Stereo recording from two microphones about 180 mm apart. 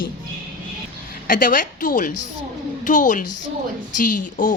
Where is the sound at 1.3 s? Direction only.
50° left (ahead or behind).